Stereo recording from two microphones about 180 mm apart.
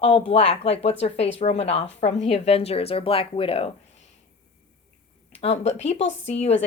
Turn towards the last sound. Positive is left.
turn(degrees=35)  # may be behind; listen again after turning